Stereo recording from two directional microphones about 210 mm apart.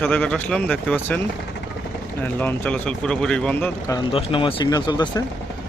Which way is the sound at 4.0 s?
25° left (ahead or behind).